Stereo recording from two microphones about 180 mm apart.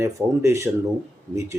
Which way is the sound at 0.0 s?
15° right (ahead or behind).